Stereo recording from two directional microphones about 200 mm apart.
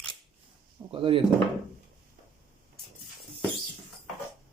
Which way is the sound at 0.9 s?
25° right (ahead or behind).